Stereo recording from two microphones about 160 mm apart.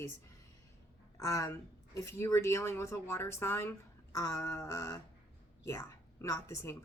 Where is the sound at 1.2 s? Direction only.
20° left (ahead or behind).